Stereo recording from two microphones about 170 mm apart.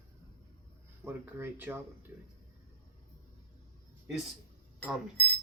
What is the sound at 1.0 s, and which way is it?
Speech, 15° right (ahead or behind).